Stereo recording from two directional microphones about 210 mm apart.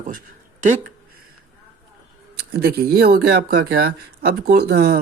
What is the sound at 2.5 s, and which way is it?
Speech, 45° right (ahead or behind).